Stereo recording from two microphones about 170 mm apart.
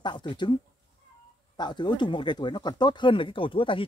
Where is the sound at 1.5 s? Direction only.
25° left (ahead or behind).